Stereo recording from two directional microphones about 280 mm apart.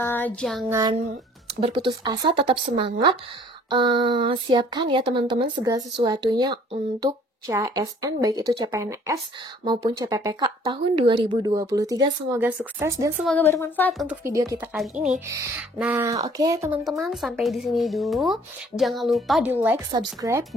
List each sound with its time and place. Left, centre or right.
0.0 s speech: centre
0.7 s a woman's voice: centre
13.3 s a woman's voice: centre
14.0 s speech: centre